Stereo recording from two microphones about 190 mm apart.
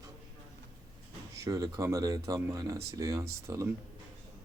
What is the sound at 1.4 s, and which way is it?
Speech, 20° right (ahead or behind).